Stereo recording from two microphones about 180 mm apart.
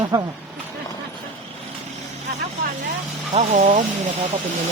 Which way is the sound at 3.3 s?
40° right (ahead or behind).